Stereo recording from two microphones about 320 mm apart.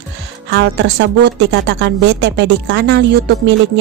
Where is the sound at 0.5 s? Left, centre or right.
Right.